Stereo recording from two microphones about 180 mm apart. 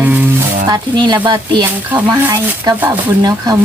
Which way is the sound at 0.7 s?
20° right (ahead or behind).